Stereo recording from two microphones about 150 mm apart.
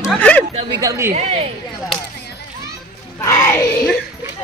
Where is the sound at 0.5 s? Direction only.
30° right (ahead or behind).